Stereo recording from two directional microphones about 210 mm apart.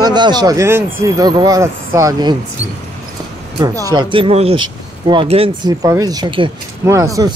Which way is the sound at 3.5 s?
15° right (ahead or behind).